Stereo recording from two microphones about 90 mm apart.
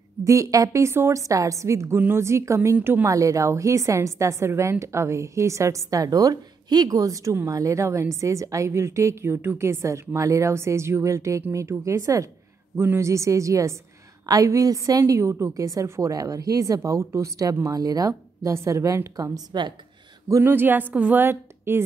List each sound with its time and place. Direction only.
0.2 s a woman's voice: 35° right (ahead or behind)
3.1 s a woman's voice: 35° right (ahead or behind)
12.7 s a woman's voice: 25° right (ahead or behind)
19.1 s speech: 45° right (ahead or behind)
20.4 s a woman's voice: 20° right (ahead or behind)